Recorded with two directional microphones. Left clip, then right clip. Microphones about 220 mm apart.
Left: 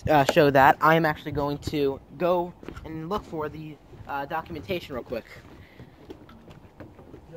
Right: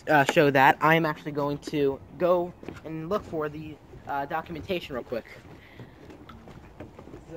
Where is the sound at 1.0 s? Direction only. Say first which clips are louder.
Left 2 dB; 45° left (ahead or behind).